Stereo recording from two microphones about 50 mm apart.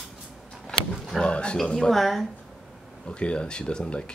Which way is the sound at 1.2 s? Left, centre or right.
Centre.